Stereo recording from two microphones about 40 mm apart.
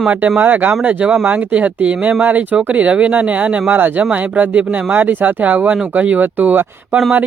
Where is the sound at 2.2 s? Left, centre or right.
Right.